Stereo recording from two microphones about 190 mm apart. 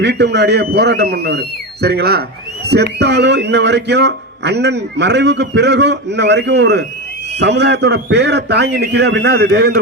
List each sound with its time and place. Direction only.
0.0 s a man's voice: 60° right (ahead or behind)